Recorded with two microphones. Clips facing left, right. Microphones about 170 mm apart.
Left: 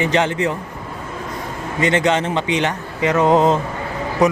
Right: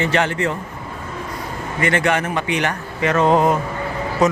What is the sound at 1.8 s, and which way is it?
Speech, 20° left (ahead or behind).